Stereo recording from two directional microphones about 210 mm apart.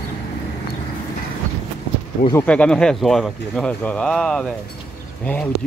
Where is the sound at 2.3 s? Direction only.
5° left (ahead or behind).